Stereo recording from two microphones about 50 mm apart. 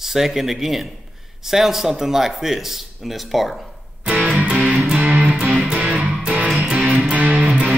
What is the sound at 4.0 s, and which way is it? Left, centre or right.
Music, centre.